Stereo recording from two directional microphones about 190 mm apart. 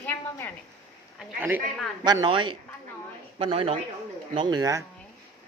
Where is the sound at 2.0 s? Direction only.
25° right (ahead or behind).